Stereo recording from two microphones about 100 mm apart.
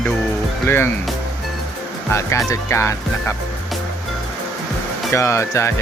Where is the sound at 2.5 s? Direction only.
30° left (ahead or behind).